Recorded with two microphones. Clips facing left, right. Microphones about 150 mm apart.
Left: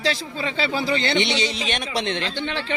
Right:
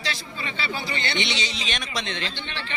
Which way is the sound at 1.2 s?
55° left (ahead or behind).